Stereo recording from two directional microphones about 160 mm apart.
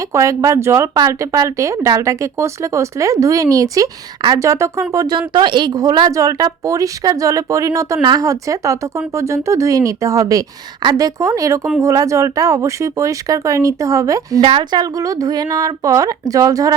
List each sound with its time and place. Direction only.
0.1 s speech: 20° right (ahead or behind)